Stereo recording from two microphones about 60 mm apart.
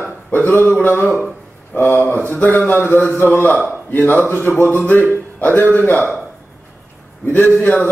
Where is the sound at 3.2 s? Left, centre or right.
Left.